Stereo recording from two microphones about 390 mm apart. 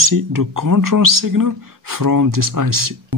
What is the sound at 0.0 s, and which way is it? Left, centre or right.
Speech, right.